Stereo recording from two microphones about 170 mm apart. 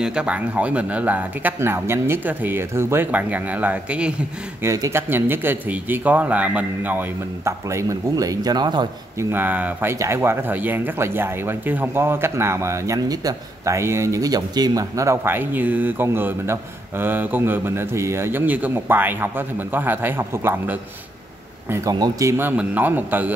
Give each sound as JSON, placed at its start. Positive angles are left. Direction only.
{"t": 0.0, "sound": "speech", "side_deg": -5}
{"t": 9.3, "sound": "speech", "side_deg": -10}